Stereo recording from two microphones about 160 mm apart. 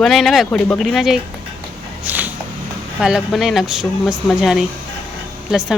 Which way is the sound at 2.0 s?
10° right (ahead or behind).